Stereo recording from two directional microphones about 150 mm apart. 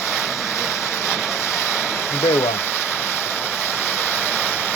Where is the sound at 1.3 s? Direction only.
15° left (ahead or behind).